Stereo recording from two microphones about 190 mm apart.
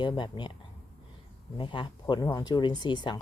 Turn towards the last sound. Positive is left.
turn(degrees=25)  # may be behind; listen again after turning